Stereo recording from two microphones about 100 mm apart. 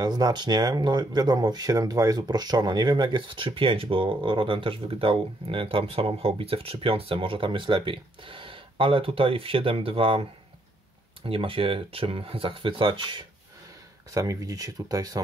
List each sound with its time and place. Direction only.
0.0 s speech: 40° right (ahead or behind); by 10.2 s 65° right (ahead or behind)
11.2 s speech: 65° right (ahead or behind)
14.1 s speech: 35° right (ahead or behind)